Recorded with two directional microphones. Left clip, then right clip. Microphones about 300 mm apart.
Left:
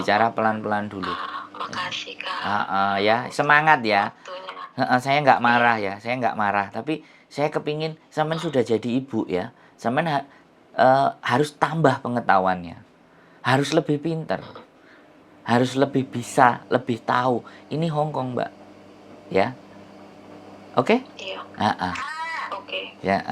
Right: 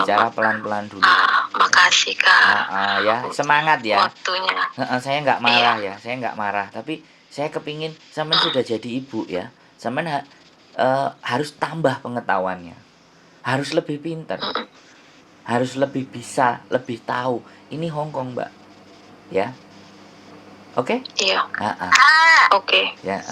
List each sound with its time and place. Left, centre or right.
0.0 s speech: centre
0.9 s speech: right
2.6 s speech: centre
4.0 s speech: right
4.8 s speech: centre
15.4 s speech: centre
20.7 s a woman's voice: centre
21.2 s speech: right
21.6 s a woman's voice: centre
21.9 s speech: right
23.0 s a woman's voice: left